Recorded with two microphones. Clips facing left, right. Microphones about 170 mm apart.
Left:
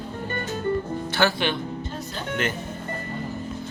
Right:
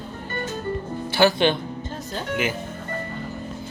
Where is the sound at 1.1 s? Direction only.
15° right (ahead or behind).